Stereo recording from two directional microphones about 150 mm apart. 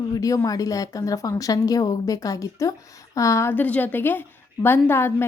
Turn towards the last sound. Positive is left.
turn(degrees=15)  # may be behind; listen again after turning